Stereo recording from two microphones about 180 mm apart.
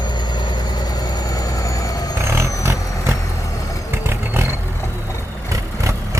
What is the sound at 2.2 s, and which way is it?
Vehicle, 15° right (ahead or behind).